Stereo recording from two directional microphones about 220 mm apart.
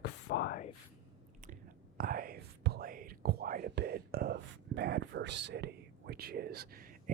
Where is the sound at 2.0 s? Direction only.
40° right (ahead or behind).